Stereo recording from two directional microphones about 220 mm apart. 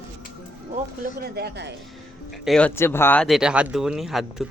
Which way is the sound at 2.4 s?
5° left (ahead or behind).